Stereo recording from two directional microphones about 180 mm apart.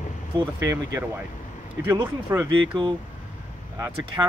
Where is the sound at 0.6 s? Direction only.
15° right (ahead or behind).